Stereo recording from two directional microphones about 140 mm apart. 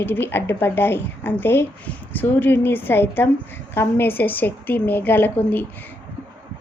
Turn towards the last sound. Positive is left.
turn(degrees=15)  # may be behind; listen again after turning